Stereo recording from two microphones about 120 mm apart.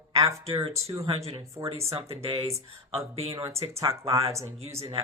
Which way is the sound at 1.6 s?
40° right (ahead or behind).